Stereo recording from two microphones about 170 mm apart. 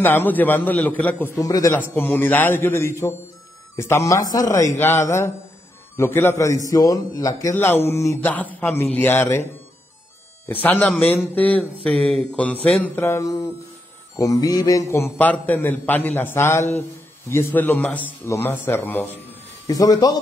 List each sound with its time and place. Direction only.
0.0 s a man's voice: 10° left (ahead or behind)
10.5 s a man's voice: 10° left (ahead or behind)
19.7 s a man's voice: 20° left (ahead or behind)